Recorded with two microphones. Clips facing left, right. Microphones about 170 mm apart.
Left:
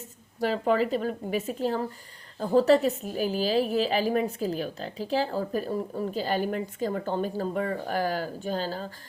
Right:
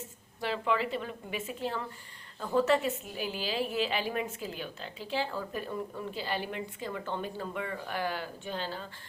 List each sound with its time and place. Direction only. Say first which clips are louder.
0.3 s a woman's voice: left 7 dB; 40° left (ahead or behind)